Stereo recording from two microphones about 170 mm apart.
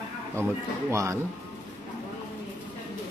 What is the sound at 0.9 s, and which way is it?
Speech, 20° right (ahead or behind).